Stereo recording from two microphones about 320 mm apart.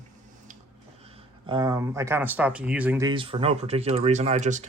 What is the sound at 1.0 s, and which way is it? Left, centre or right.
A man's voice, centre.